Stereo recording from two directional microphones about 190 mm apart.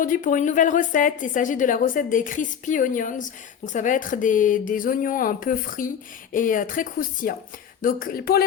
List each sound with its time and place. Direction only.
0.0 s a woman's voice: 45° left (ahead or behind)